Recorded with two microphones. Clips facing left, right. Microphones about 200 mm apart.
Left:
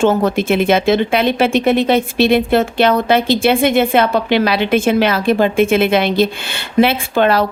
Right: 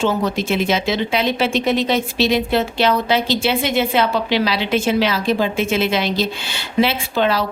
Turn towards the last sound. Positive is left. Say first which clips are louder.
# left 5 dB
turn(degrees=55)  # may be behind; listen again after turning